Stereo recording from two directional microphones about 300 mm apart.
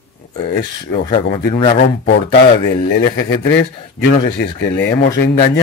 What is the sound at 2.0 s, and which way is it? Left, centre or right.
A man's voice, left.